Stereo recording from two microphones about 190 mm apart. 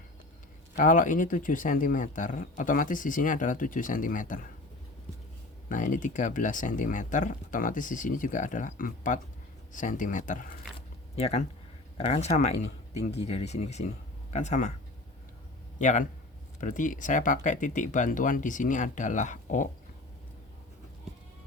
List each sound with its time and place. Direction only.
0.8 s speech: 45° left (ahead or behind)
5.6 s speech: 45° left (ahead or behind)
10.8 s a sound: 30° left (ahead or behind)
11.9 s speech: 35° left (ahead or behind)
15.8 s speech: 40° left (ahead or behind)